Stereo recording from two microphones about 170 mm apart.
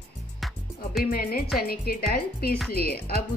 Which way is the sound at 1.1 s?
60° left (ahead or behind).